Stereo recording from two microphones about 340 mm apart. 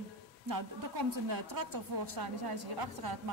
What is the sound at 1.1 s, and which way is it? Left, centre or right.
A woman's voice, right.